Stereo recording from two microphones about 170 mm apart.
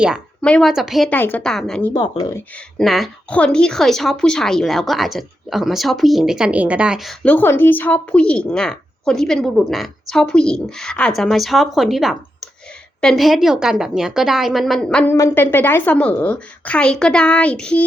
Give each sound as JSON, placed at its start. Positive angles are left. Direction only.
{"t": 0.4, "sound": "speech", "side_deg": 5}
{"t": 1.1, "sound": "speech", "side_deg": 10}
{"t": 1.9, "sound": "speech", "side_deg": 25}
{"t": 2.7, "sound": "a woman's voice", "side_deg": 0}